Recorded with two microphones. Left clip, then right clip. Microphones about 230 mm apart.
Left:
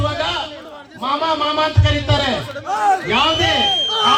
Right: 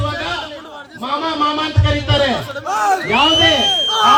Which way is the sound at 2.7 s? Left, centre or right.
Right.